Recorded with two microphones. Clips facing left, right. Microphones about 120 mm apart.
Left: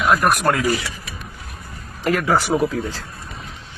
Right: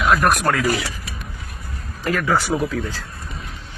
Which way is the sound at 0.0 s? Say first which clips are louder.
Even; 5° left (ahead or behind).